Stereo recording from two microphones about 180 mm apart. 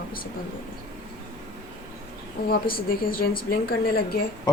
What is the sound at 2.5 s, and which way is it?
A woman's voice, 55° left (ahead or behind).